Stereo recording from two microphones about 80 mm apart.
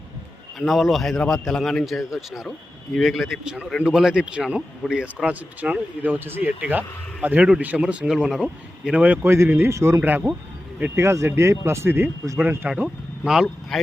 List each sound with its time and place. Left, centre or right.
0.6 s a man's voice: centre
9.0 s speech: right
9.3 s speech: right
10.0 s speech: right
10.9 s speech: right
12.6 s a man's voice: centre